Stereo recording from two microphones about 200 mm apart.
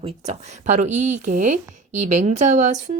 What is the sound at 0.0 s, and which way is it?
Speech, 35° right (ahead or behind).